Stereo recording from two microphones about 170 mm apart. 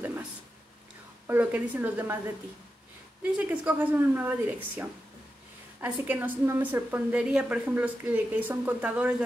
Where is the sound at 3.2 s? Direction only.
10° right (ahead or behind).